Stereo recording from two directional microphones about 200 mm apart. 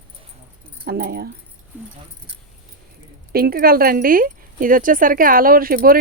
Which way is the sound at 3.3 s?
50° right (ahead or behind).